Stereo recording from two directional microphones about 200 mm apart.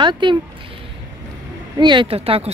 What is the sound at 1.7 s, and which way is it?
Speech, 25° right (ahead or behind).